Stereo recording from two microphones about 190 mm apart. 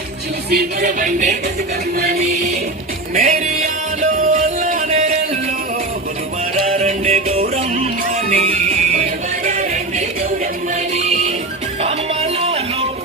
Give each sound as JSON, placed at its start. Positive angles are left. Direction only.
{"t": 0.5, "sound": "speech", "side_deg": -40}
{"t": 3.2, "sound": "music", "side_deg": -40}
{"t": 6.7, "sound": "music", "side_deg": -35}
{"t": 10.9, "sound": "music", "side_deg": -35}